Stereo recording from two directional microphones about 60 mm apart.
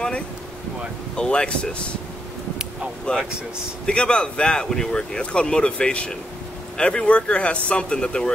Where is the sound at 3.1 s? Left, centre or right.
Centre.